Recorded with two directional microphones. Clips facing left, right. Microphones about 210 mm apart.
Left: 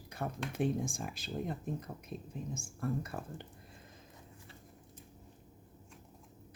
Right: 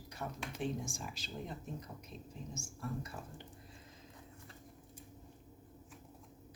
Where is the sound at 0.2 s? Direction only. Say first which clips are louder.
Left 6 dB; 55° left (ahead or behind).